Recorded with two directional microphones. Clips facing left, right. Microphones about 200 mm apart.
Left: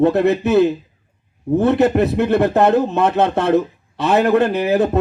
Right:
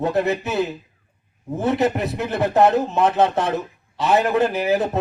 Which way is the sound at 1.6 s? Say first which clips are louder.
Left 5 dB; 60° left (ahead or behind).